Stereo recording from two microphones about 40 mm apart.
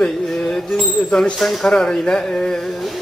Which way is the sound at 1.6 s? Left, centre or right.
Centre.